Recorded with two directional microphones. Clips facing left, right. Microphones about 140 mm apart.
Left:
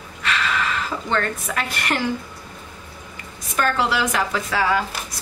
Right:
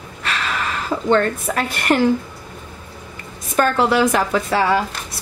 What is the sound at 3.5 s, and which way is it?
A woman's voice, 40° right (ahead or behind).